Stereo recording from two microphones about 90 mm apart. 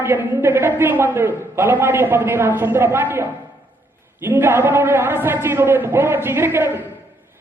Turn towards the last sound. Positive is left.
turn(degrees=-25)  # may be behind; listen again after turning